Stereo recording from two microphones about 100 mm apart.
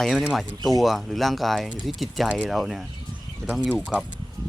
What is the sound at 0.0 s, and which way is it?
Speech, centre (ahead or behind).